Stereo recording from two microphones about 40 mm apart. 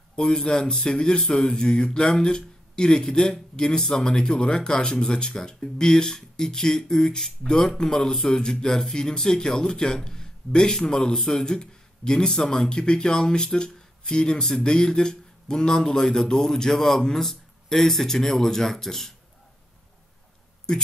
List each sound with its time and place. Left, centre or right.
0.1 s speech: centre
20.7 s speech: centre